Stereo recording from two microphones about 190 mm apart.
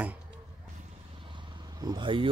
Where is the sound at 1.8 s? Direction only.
20° right (ahead or behind).